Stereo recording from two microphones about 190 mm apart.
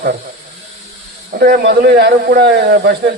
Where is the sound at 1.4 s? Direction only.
60° right (ahead or behind).